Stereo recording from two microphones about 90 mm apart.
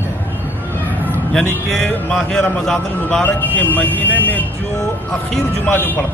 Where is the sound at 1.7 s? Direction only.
5° left (ahead or behind).